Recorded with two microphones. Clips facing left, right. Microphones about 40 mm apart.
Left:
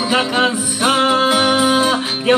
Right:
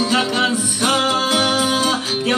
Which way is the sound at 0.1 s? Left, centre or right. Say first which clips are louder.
Left 2 dB; centre.